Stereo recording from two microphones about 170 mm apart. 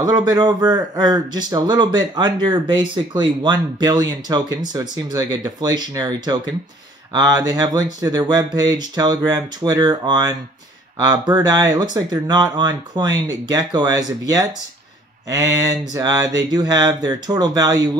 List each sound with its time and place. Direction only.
0.0 s speech: 25° right (ahead or behind)